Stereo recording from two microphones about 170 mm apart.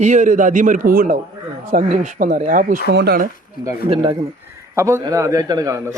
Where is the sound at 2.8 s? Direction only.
65° right (ahead or behind).